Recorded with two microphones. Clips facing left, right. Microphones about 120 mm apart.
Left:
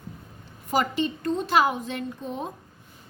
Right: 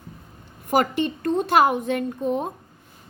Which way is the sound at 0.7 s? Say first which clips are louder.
Right 4 dB; 55° right (ahead or behind).